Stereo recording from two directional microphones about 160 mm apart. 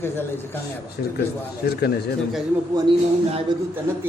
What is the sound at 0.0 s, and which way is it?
Speech, 15° left (ahead or behind).